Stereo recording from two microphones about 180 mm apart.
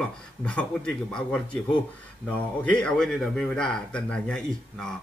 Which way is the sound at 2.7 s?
5° left (ahead or behind).